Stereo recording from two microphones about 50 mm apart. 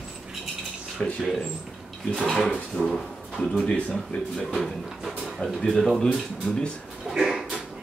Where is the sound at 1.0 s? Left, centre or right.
Left.